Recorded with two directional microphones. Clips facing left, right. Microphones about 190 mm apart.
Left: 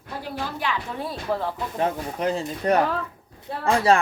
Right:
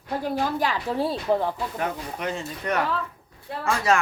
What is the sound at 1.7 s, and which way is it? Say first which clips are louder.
Speech: left 4 dB; 30° left (ahead or behind).